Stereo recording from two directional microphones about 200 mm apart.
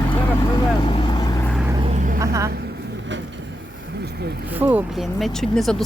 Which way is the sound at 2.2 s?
15° right (ahead or behind).